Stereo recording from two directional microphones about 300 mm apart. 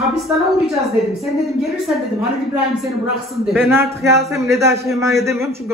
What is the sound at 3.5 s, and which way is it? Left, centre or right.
A man's voice, centre.